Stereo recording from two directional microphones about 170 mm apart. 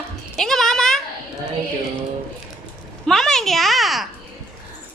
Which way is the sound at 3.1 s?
5° left (ahead or behind).